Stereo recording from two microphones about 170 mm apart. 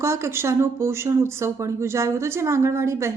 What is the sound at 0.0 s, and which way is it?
A woman's voice, 15° right (ahead or behind).